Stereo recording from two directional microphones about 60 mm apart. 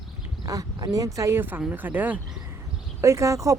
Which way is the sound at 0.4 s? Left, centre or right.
Right.